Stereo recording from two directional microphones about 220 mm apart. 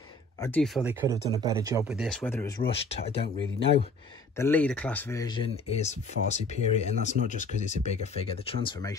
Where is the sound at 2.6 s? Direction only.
25° left (ahead or behind).